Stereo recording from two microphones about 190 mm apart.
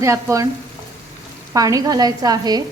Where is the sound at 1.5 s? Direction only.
20° right (ahead or behind).